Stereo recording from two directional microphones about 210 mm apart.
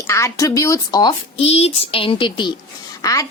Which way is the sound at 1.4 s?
30° left (ahead or behind).